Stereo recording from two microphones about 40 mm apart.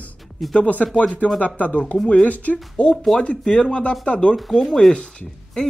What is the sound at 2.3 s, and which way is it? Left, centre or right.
Speech, left.